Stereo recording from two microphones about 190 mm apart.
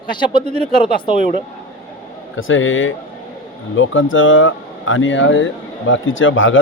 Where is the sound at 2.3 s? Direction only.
90° left.